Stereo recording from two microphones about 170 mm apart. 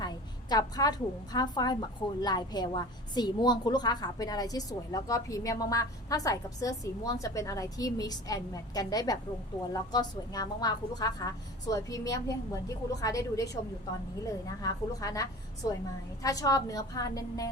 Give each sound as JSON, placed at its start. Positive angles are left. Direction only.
{"t": 0.5, "sound": "a woman's voice", "side_deg": 20}